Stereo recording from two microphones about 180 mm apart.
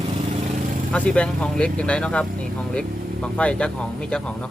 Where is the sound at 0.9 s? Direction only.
5° left (ahead or behind).